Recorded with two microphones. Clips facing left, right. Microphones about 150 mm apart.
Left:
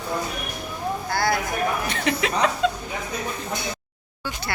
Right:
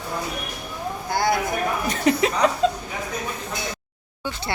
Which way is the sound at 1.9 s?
40° right (ahead or behind).